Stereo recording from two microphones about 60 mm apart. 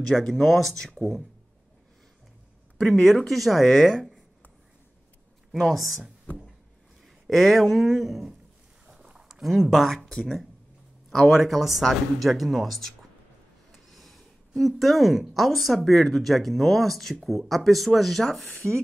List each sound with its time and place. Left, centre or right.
0.1 s speech: centre
2.8 s speech: centre
5.5 s speech: centre
7.2 s speech: centre
8.8 s a sound: centre
9.4 s speech: centre